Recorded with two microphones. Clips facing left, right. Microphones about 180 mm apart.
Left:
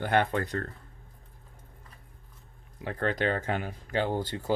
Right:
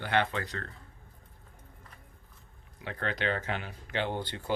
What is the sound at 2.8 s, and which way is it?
Speech, 45° left (ahead or behind).